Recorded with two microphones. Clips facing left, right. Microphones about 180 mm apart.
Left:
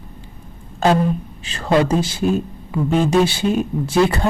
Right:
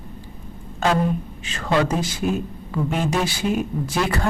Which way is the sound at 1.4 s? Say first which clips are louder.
Left 4 dB; 30° left (ahead or behind).